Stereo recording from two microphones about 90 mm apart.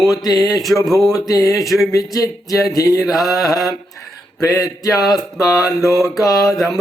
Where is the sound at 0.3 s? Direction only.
Centre (ahead or behind).